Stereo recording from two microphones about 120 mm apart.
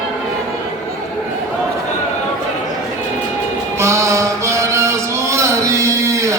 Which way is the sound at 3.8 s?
25° right (ahead or behind).